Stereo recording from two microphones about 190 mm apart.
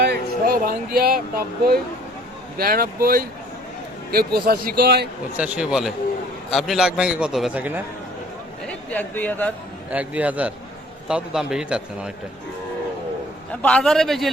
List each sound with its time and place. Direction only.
0.0 s a sound: 55° right (ahead or behind)
2.6 s a man's voice: 50° right (ahead or behind)
5.4 s a man's voice: 5° right (ahead or behind)
8.9 s speech: 10° left (ahead or behind)
9.9 s a man's voice: 10° right (ahead or behind)
13.5 s a man's voice: 5° left (ahead or behind)